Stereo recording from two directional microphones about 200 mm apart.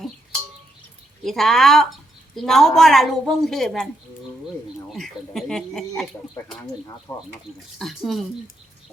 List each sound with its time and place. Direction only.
1.2 s a woman's voice: centre (ahead or behind)
4.9 s a woman's voice: centre (ahead or behind)
7.1 s speech: 20° left (ahead or behind)
7.8 s a woman's voice: centre (ahead or behind)